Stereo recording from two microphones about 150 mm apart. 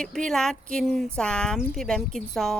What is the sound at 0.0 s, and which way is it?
Speech, 5° left (ahead or behind).